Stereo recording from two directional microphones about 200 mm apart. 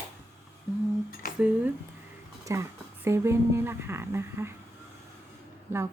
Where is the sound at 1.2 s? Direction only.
45° left (ahead or behind).